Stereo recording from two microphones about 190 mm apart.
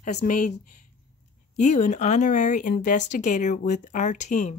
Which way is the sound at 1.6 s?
40° left (ahead or behind).